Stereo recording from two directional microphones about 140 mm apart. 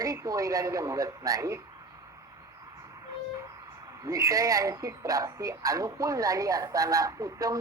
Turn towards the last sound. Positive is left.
turn(degrees=-25)  # may be behind; listen again after turning